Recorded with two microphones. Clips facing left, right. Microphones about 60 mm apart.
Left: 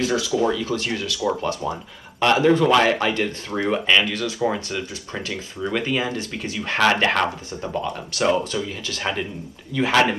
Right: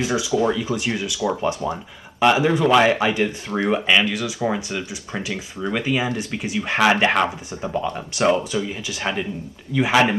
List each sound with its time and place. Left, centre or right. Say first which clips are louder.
0.0 s speech: right 1 dB; centre